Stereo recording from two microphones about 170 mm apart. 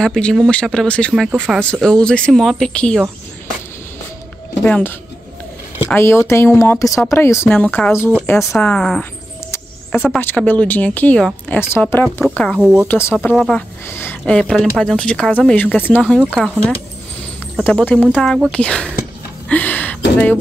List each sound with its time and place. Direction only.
0.0 s speech: 5° left (ahead or behind)
4.6 s speech: 5° left (ahead or behind)
5.9 s speech: 15° left (ahead or behind)
8.5 s speech: 5° left (ahead or behind)
10.2 s speech: 10° left (ahead or behind)
12.5 s speech: 5° right (ahead or behind)
12.8 s speech: 10° left (ahead or behind)
19.5 s a sound: 10° left (ahead or behind)